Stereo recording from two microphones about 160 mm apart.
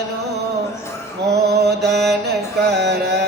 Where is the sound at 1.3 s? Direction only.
90° right.